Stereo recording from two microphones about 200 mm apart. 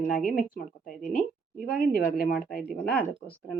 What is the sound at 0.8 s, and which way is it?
Speech, centre (ahead or behind).